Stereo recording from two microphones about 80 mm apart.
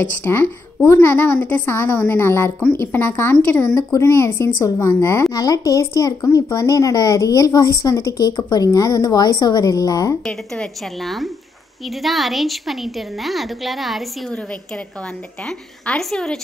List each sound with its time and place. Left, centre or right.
0.2 s a woman's voice: left
3.7 s a woman's voice: left
8.6 s speech: left
10.2 s a woman's voice: centre
14.3 s a woman's voice: centre